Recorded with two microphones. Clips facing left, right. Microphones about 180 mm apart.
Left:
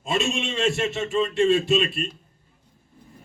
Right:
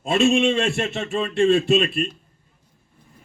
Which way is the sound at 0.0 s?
55° right (ahead or behind).